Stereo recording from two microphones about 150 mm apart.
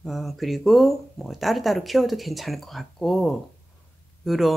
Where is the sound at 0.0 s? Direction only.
Centre (ahead or behind).